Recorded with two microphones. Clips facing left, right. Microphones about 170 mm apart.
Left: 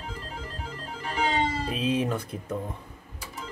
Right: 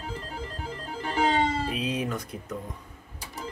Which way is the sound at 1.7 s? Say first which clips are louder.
Left 3 dB; 25° left (ahead or behind).